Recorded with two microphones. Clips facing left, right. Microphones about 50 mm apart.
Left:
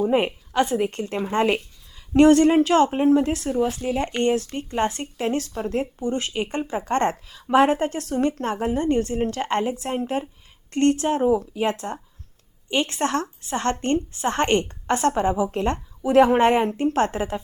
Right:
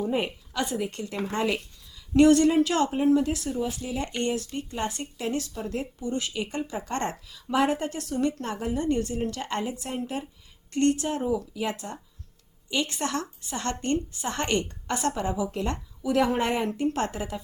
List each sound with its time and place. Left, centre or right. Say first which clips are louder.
0.0 s speech: left 7 dB; left